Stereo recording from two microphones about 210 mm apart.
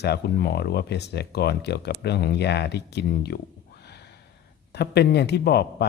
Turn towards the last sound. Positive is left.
turn(degrees=50)  # may be behind; listen again after turning